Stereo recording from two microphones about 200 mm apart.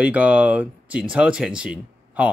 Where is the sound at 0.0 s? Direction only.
5° right (ahead or behind).